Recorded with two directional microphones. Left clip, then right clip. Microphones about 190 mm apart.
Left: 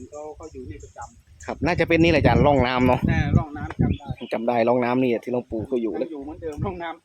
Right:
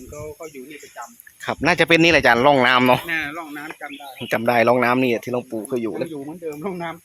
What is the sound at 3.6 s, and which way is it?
Speech, 5° left (ahead or behind).